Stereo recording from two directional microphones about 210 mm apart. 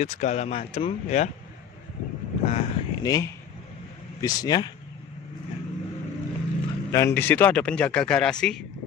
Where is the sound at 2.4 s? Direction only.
25° left (ahead or behind).